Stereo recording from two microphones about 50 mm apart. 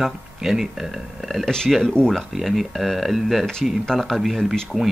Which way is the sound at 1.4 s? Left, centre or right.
Centre.